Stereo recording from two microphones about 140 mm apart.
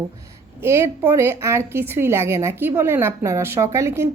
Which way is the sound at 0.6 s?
20° right (ahead or behind).